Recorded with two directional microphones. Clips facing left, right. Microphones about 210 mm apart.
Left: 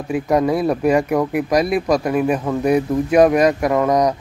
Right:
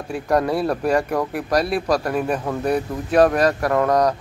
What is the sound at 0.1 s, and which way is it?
Speech, 10° left (ahead or behind).